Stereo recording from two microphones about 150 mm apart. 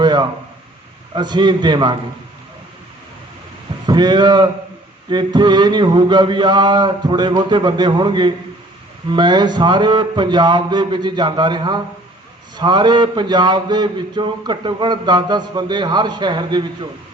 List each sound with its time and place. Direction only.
0.0 s a sound: 30° right (ahead or behind)
1.1 s a man's voice: 30° right (ahead or behind)
3.8 s speech: 30° right (ahead or behind)